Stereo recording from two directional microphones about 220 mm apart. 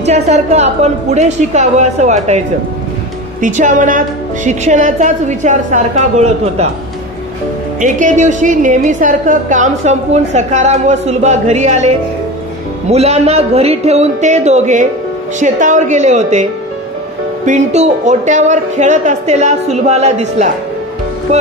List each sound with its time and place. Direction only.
0.0 s a woman's voice: 30° right (ahead or behind)
7.8 s a woman's voice: 35° right (ahead or behind)
12.9 s a woman's voice: 30° right (ahead or behind)
17.5 s a woman's voice: 30° right (ahead or behind)